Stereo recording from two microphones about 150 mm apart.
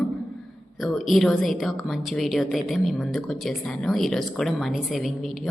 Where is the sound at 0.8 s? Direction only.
Centre (ahead or behind).